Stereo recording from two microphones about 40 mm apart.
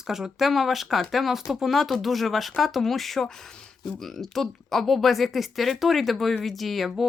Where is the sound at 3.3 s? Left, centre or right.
Centre.